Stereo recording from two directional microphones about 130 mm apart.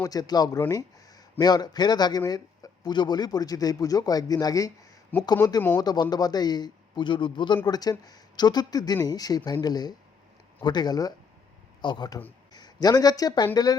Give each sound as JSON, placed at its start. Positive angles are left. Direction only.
{"t": 0.0, "sound": "a man's voice", "side_deg": 30}